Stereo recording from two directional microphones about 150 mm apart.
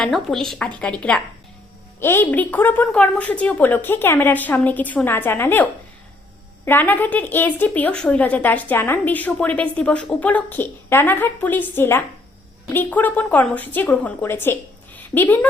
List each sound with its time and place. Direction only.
0.0 s a woman's voice: centre (ahead or behind)
6.7 s a woman's voice: 15° left (ahead or behind)